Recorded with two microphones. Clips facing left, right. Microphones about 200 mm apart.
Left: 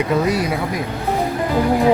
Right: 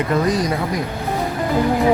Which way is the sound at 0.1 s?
10° left (ahead or behind).